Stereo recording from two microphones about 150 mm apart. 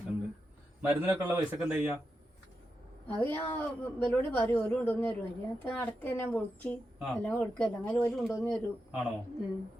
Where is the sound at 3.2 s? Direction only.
15° left (ahead or behind).